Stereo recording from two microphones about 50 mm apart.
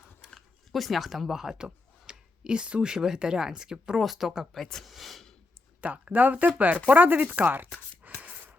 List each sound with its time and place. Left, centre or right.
0.2 s a sound: centre
0.7 s speech: centre; by 2.9 s right
2.9 s speech: centre
4.5 s speech: centre
5.8 s speech: right
8.2 s a sound: right